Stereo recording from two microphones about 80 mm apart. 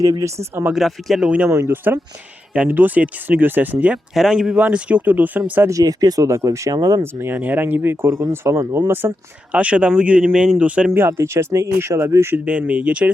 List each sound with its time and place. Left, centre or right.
0.0 s speech: right
0.6 s speech: centre
1.5 s speech: right
1.7 s speech: right
4.1 s speech: centre
4.6 s speech: centre
5.6 s speech: right
6.2 s speech: right
9.5 s speech: centre
10.9 s speech: right
12.5 s speech: centre